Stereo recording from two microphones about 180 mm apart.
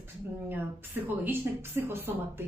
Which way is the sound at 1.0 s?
10° right (ahead or behind).